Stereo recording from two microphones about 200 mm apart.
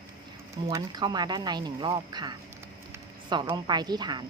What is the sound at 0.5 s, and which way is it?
Speech, 20° right (ahead or behind).